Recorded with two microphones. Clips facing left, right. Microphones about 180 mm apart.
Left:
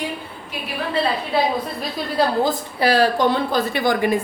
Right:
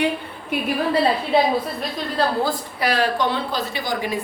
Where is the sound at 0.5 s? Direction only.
55° right (ahead or behind).